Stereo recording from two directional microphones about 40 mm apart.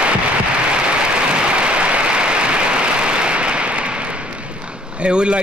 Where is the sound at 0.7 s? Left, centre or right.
Right.